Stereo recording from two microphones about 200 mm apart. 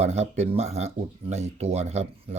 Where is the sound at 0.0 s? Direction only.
35° right (ahead or behind).